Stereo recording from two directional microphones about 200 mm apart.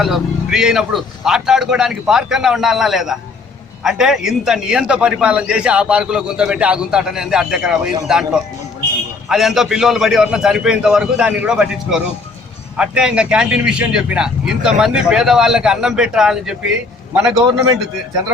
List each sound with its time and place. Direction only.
0.0 s a man's voice: centre (ahead or behind)
9.3 s a man's voice: centre (ahead or behind)
17.3 s a man's voice: 20° right (ahead or behind)